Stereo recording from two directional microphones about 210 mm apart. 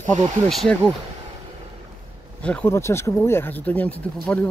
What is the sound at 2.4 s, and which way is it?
Speech, 5° left (ahead or behind).